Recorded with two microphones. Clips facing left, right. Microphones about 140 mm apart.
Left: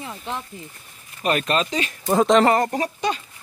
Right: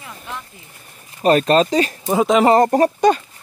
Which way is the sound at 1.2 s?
35° right (ahead or behind).